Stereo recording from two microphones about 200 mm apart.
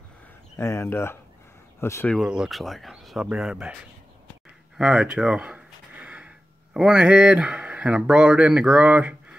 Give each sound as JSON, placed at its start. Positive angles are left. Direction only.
{"t": 0.6, "sound": "speech", "side_deg": 15}
{"t": 2.1, "sound": "speech", "side_deg": -5}
{"t": 4.7, "sound": "speech", "side_deg": -5}